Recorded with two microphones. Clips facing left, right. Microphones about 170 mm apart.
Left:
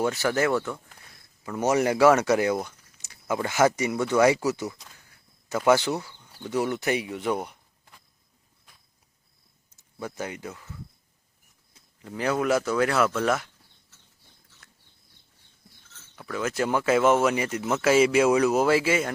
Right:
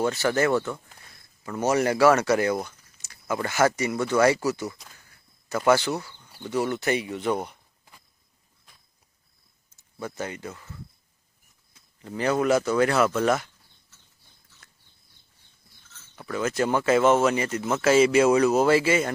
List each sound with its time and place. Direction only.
0.0 s speech: 10° left (ahead or behind)
1.6 s speech: 15° left (ahead or behind)
2.6 s a sound: 20° left (ahead or behind)
3.3 s speech: 15° left (ahead or behind)
9.6 s speech: 10° left (ahead or behind)
12.0 s speech: 5° left (ahead or behind)
16.1 s speech: centre (ahead or behind)